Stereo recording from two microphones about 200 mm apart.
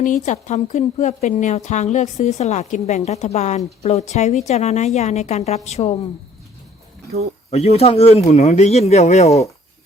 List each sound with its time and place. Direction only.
0.0 s a woman's voice: 40° left (ahead or behind)
7.5 s a woman's voice: 30° left (ahead or behind)